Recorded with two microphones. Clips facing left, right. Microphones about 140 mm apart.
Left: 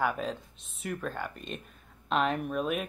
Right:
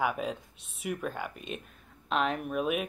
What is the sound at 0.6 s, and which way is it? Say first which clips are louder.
Speech: even; 70° right (ahead or behind).